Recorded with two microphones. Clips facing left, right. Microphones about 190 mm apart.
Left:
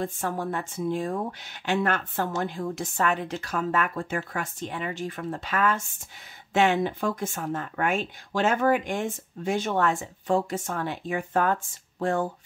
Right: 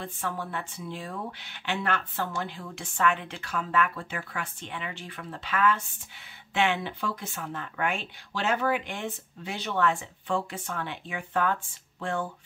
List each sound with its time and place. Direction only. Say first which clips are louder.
0.0 s speech: left 5 dB; 45° left (ahead or behind)